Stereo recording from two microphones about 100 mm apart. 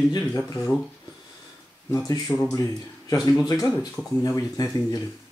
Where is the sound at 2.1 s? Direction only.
30° left (ahead or behind).